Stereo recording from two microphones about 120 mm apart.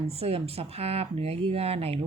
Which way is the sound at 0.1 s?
55° right (ahead or behind).